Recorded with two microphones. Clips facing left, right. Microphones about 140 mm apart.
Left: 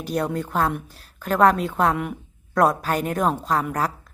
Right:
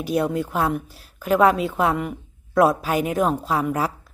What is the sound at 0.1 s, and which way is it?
Speech, 5° right (ahead or behind).